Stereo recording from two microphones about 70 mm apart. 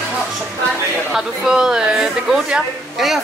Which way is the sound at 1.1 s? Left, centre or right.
Centre.